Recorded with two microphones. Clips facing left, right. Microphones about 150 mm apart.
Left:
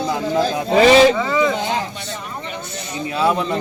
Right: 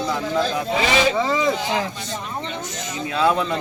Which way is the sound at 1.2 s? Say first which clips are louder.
Left 2 dB; 30° right (ahead or behind).